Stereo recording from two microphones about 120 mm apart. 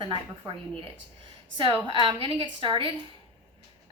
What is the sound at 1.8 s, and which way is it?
A woman's voice, 45° right (ahead or behind).